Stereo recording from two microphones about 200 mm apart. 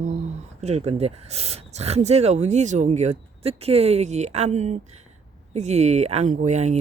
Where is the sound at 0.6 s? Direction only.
35° right (ahead or behind).